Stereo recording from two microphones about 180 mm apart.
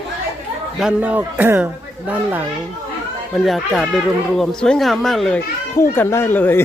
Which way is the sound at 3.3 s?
Centre (ahead or behind).